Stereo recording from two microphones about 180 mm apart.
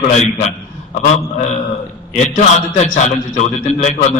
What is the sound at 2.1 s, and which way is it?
A man's voice, 40° left (ahead or behind).